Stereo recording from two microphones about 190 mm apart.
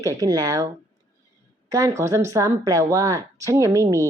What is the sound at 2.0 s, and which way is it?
Speech, 15° right (ahead or behind).